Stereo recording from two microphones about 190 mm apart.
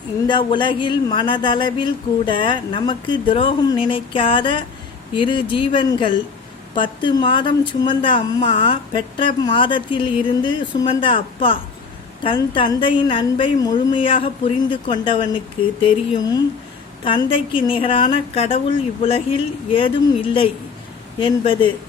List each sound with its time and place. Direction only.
0.3 s a woman's voice: 25° left (ahead or behind)